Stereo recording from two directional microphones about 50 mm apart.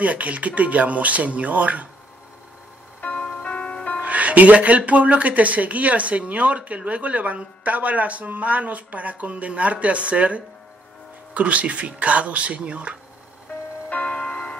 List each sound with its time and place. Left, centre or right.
0.0 s speech: right
3.0 s music: left
4.0 s speech: right
13.8 s tick-tock: left
14.1 s music: centre